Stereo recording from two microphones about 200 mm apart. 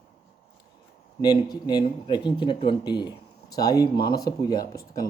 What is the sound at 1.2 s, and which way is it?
Speech, 20° left (ahead or behind).